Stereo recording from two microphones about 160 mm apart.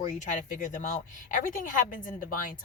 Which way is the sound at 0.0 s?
50° left (ahead or behind).